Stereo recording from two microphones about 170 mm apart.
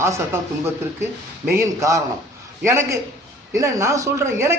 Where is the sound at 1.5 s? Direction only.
15° right (ahead or behind).